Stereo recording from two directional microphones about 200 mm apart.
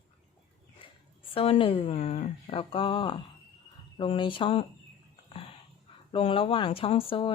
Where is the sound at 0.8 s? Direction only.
25° left (ahead or behind).